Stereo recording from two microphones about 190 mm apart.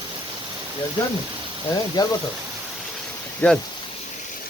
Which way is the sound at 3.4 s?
10° left (ahead or behind).